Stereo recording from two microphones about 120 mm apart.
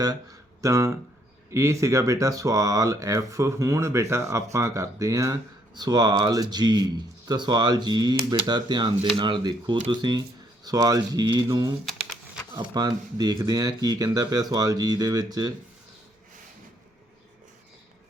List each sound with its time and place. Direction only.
0.6 s speech: 25° right (ahead or behind)
12.5 s speech: 35° right (ahead or behind)